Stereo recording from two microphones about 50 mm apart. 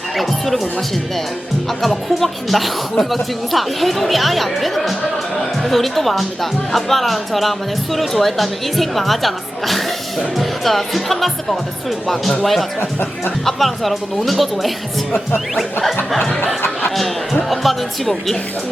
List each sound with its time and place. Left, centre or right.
0.2 s speech: centre
1.8 s speech: centre
17.5 s speech: centre